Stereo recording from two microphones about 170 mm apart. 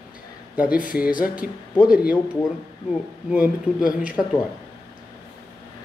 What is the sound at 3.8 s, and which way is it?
Speech, 10° right (ahead or behind).